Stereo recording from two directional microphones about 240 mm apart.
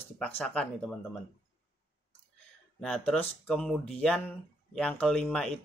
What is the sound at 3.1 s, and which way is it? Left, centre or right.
Speech, centre.